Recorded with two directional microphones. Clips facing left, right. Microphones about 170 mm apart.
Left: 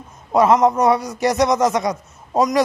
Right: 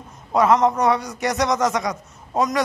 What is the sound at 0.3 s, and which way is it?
A man's voice, 25° left (ahead or behind).